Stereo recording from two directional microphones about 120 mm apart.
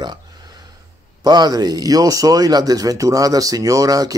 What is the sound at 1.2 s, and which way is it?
Speech, 35° right (ahead or behind).